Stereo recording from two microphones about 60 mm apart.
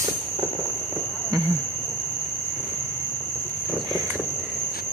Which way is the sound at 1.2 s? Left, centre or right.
Right.